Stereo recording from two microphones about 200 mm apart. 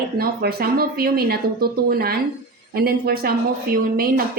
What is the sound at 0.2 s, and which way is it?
Speech, 50° right (ahead or behind).